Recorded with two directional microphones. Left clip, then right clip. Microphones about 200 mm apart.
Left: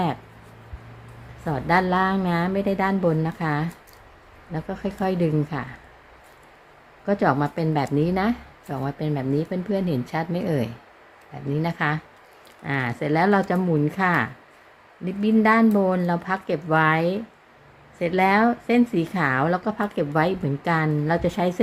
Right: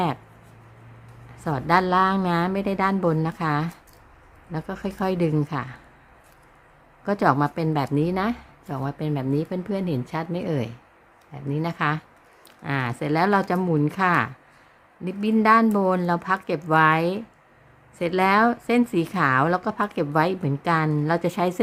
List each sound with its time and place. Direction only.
1.5 s a woman's voice: 20° right (ahead or behind)
7.0 s a woman's voice: 20° right (ahead or behind)